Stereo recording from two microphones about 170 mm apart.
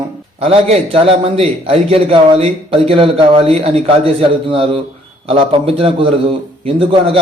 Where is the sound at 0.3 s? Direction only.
35° right (ahead or behind).